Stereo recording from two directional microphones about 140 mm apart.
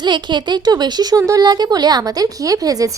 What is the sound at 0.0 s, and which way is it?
Speech, 35° right (ahead or behind).